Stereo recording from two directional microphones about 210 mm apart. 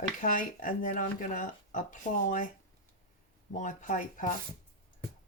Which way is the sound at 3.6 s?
35° left (ahead or behind).